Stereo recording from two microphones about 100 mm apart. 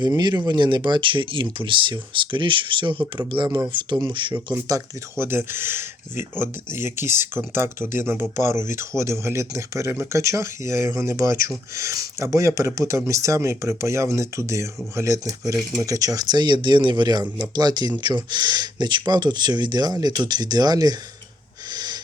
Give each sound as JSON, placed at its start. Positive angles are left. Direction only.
{"t": 0.0, "sound": "speech", "side_deg": -45}
{"t": 3.3, "sound": "speech", "side_deg": -45}
{"t": 5.1, "sound": "speech", "side_deg": -25}
{"t": 21.7, "sound": "wheeze", "side_deg": -45}